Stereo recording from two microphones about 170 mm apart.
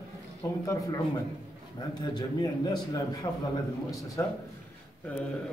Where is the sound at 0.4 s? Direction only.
20° left (ahead or behind).